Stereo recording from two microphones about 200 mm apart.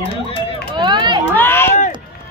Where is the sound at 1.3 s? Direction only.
10° left (ahead or behind).